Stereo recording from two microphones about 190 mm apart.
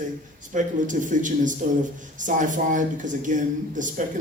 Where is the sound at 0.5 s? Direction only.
40° right (ahead or behind).